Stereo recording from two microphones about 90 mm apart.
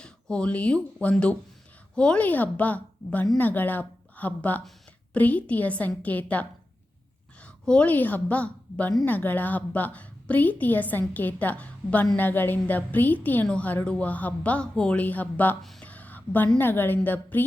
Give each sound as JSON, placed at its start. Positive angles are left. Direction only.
{"t": 0.0, "sound": "a woman's voice", "side_deg": 10}
{"t": 7.7, "sound": "a woman's voice", "side_deg": 15}
{"t": 15.8, "sound": "a sound", "side_deg": 15}
{"t": 16.6, "sound": "a woman's voice", "side_deg": 25}